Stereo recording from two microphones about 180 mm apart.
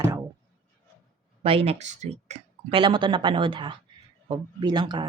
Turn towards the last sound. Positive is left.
turn(degrees=-25)  # may be behind; listen again after turning